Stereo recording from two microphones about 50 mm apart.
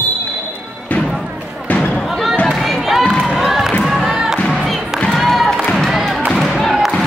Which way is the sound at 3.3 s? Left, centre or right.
Centre.